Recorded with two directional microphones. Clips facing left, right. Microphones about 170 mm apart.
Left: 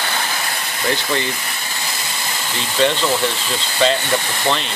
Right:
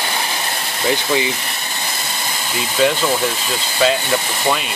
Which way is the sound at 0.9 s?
10° right (ahead or behind).